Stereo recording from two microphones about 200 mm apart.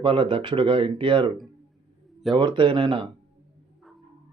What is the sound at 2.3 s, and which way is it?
Speech, 25° right (ahead or behind).